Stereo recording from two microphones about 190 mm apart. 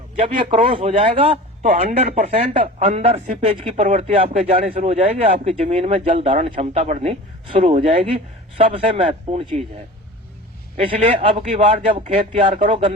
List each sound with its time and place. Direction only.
0.2 s speech: 30° right (ahead or behind)
10.8 s speech: 30° right (ahead or behind)